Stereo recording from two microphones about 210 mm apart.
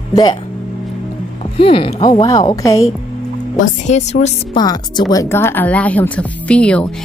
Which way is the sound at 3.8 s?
35° left (ahead or behind).